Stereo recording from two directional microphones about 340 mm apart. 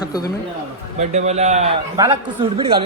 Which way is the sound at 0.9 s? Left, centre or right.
Centre.